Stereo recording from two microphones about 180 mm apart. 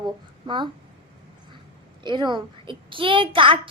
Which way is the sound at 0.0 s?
25° right (ahead or behind).